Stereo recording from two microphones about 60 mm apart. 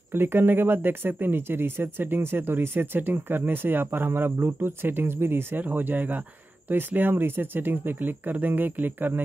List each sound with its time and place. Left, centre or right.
0.1 s speech: right